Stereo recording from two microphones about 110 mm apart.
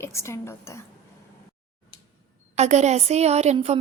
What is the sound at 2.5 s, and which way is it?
A woman's voice, 90° right.